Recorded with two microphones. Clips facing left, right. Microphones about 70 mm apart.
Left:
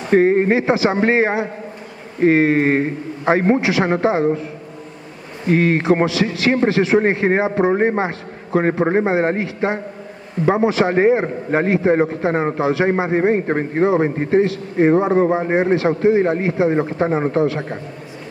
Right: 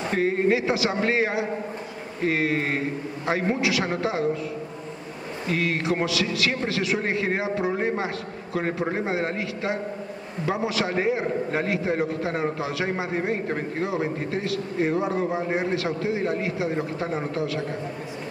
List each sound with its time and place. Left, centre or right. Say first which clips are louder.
0.1 s a man's voice: left 9 dB; left
5.5 s a man's voice: left 10 dB; left